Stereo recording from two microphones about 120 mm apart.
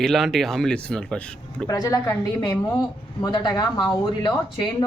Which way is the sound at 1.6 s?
30° left (ahead or behind).